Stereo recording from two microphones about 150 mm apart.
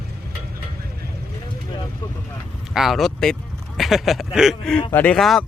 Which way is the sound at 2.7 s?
Centre (ahead or behind).